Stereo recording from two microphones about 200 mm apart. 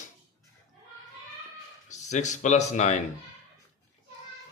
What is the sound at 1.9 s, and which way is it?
Speech, 35° left (ahead or behind).